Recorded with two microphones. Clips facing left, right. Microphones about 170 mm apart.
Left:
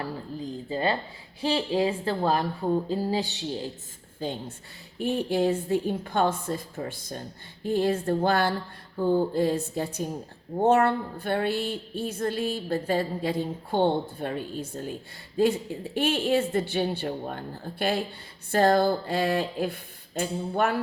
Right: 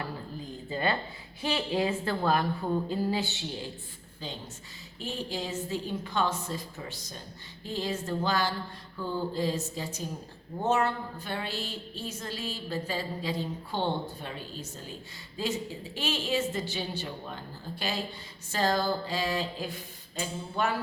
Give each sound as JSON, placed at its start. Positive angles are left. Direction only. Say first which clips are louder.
{"t": 0.7, "sound": "a woman's voice", "louder": "left 2 dB", "side_deg": 30}
{"t": 4.2, "sound": "a woman's voice", "louder": "left 8 dB", "side_deg": 55}
{"t": 4.9, "sound": "a sound", "louder": "left 10 dB", "side_deg": 60}